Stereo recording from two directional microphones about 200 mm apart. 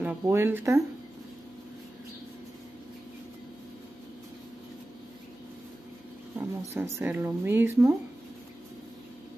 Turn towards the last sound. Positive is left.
turn(degrees=-15)  # may be behind; listen again after turning